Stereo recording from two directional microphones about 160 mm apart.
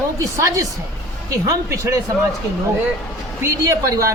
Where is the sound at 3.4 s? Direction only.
20° right (ahead or behind).